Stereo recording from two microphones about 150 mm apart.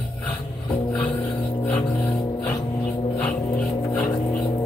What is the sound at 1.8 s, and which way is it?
Music, 25° left (ahead or behind).